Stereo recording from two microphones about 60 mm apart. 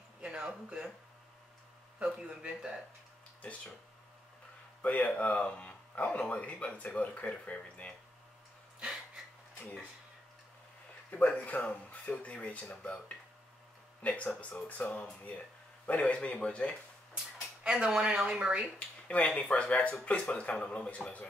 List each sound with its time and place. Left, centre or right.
0.2 s speech: centre
2.0 s speech: centre
4.8 s speech: left
8.7 s a sound: centre
11.1 s speech: left
14.0 s speech: left
17.6 s speech: centre
18.8 s speech: centre